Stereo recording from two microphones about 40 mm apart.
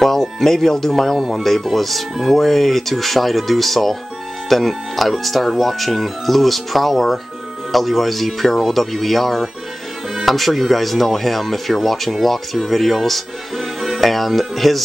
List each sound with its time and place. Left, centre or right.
0.0 s speech: centre
13.7 s music: centre
14.5 s speech: centre